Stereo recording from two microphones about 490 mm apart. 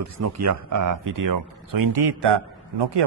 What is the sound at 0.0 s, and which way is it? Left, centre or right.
Speech, right.